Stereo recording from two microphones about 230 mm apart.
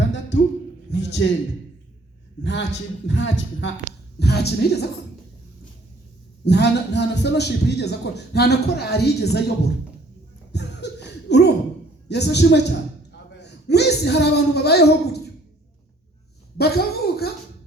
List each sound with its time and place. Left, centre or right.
0.0 s a sound: left
2.4 s a man's voice: left
6.4 s a man's voice: left
10.5 s laughter: left
12.0 s a man's voice: left
16.6 s a sound: left